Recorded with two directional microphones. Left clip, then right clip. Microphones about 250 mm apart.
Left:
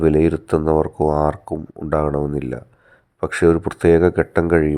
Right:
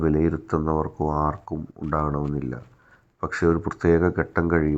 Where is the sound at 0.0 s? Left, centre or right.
Left.